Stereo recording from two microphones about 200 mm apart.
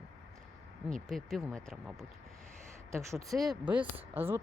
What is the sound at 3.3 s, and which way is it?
Speech, 5° right (ahead or behind).